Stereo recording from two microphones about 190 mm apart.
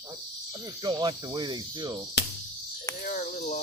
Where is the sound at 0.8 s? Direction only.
20° right (ahead or behind).